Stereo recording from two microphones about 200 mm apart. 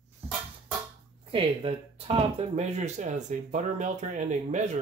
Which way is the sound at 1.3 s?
25° right (ahead or behind).